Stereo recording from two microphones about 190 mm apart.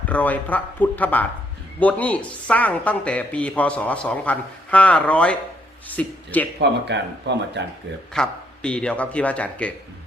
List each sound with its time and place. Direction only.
0.1 s speech: 10° left (ahead or behind)
6.6 s speech: 65° right (ahead or behind)
8.1 s a man's voice: 5° left (ahead or behind)